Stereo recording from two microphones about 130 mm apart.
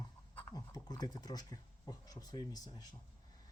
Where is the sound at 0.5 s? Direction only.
30° left (ahead or behind).